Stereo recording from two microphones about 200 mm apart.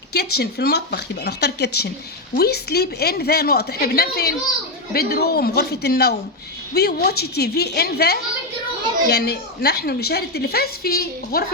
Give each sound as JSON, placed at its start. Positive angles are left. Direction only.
{"t": 0.1, "sound": "a woman's voice", "side_deg": 55}